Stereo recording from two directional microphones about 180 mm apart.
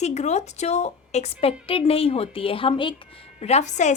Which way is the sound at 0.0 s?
40° left (ahead or behind).